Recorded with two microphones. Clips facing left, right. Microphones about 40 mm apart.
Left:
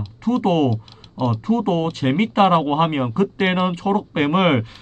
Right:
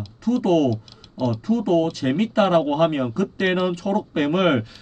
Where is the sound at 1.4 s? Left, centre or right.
Left.